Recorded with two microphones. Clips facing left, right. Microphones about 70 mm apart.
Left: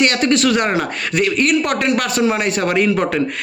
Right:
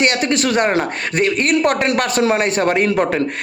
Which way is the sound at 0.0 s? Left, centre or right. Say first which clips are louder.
Left 2 dB; right.